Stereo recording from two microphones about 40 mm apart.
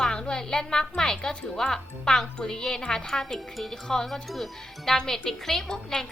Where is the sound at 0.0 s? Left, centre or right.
Left.